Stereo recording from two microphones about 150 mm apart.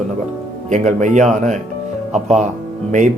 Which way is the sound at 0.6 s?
55° right (ahead or behind).